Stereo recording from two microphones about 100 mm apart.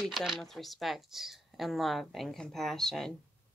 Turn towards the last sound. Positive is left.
turn(degrees=5)  # may be behind; listen again after turning